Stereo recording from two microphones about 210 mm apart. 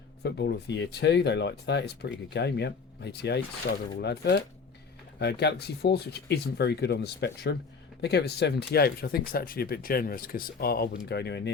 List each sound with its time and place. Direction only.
0.2 s speech: 50° left (ahead or behind)